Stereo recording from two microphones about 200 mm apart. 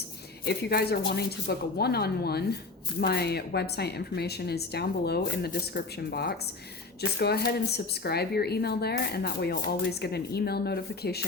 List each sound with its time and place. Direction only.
0.4 s speech: 55° left (ahead or behind)